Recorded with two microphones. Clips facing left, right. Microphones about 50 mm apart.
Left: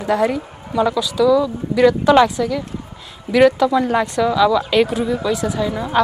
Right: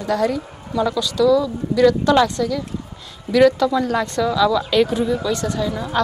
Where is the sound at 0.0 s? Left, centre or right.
Left.